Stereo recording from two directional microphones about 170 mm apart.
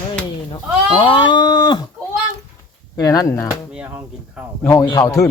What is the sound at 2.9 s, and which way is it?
Speech, 20° left (ahead or behind).